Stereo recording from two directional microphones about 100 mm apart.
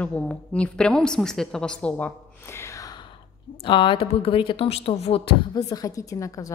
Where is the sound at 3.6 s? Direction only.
55° left (ahead or behind); by 5.3 s 80° left.